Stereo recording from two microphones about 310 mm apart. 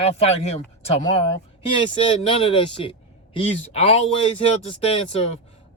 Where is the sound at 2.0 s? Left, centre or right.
Centre.